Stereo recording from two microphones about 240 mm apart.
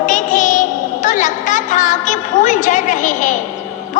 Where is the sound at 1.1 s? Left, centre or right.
Left.